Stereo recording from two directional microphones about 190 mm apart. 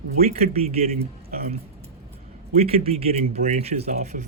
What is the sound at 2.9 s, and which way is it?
Speech, 30° right (ahead or behind).